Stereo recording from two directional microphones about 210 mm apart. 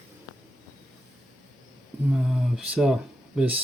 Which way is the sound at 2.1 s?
Centre (ahead or behind).